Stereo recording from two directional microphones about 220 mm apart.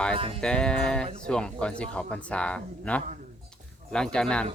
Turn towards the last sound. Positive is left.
turn(degrees=5)  # may be behind; listen again after turning